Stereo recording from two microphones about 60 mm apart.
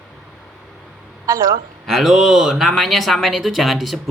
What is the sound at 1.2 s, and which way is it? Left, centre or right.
Speech, right.